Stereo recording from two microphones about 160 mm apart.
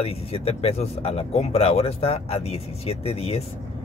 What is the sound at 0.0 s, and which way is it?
Speech, 40° left (ahead or behind).